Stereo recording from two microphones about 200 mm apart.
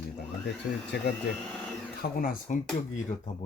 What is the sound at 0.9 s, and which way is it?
Speech, 55° left (ahead or behind).